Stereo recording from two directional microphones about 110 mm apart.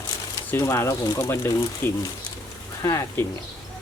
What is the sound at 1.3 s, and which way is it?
Speech, 25° left (ahead or behind).